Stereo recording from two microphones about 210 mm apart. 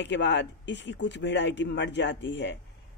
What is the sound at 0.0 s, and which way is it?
Speech, 55° left (ahead or behind).